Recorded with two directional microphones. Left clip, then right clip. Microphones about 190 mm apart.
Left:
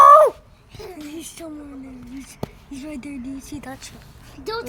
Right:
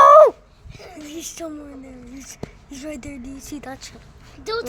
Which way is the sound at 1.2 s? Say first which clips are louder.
Right 4 dB; 25° right (ahead or behind).